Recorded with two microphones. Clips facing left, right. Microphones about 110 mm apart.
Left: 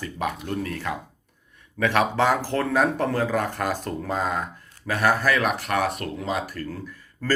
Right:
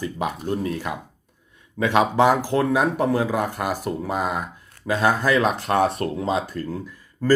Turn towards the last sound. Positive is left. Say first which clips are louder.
# right 6 dB
turn(degrees=-15)  # may be behind; listen again after turning